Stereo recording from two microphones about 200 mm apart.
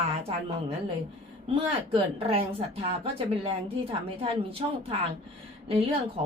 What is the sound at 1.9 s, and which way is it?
Speech, 30° right (ahead or behind).